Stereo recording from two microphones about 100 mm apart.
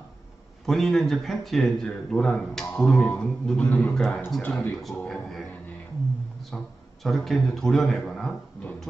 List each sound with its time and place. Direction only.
0.7 s speech: 5° left (ahead or behind)
4.0 s speech: centre (ahead or behind)
4.4 s speech: 15° left (ahead or behind)
5.0 s speech: 5° left (ahead or behind)
6.5 s a man's voice: centre (ahead or behind)